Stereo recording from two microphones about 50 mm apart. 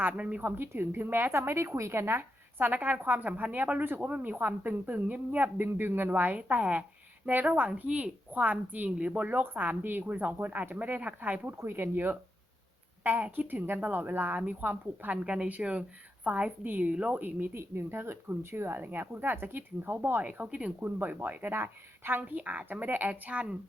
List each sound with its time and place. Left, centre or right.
0.0 s speech: right
11.5 s speech: right
13.2 s a woman's voice: right
13.5 s a woman's voice: right
17.2 s speech: right
17.5 s speech: right
20.5 s speech: right
22.3 s speech: right